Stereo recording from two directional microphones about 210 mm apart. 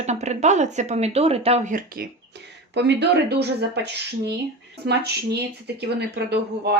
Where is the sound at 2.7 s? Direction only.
55° right (ahead or behind).